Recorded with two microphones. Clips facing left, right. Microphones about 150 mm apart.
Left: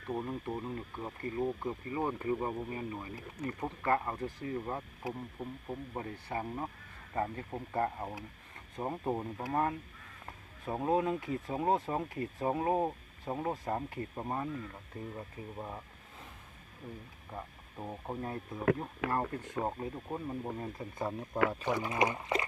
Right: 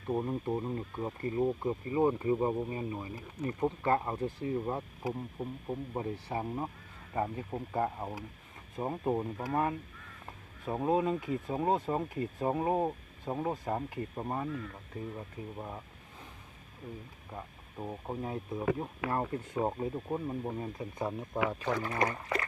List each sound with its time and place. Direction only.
0.1 s speech: 15° right (ahead or behind)
10.2 s a sound: 5° right (ahead or behind)
10.9 s speech: centre (ahead or behind)
17.3 s speech: centre (ahead or behind)
21.6 s speech: 15° left (ahead or behind)